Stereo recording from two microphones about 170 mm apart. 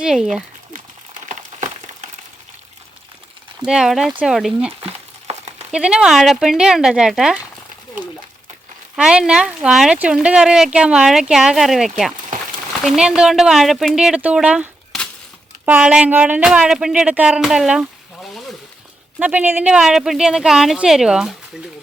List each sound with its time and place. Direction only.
0.0 s speech: 5° right (ahead or behind)
1.3 s a sound: 45° right (ahead or behind)
3.7 s speech: 5° right (ahead or behind)
4.8 s a sound: 40° right (ahead or behind)
5.7 s speech: 5° right (ahead or behind)
9.0 s speech: 5° right (ahead or behind)